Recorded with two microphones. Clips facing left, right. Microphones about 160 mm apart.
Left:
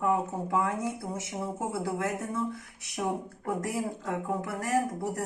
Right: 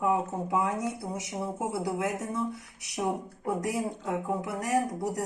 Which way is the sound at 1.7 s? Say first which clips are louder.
Right 1 dB; 20° right (ahead or behind).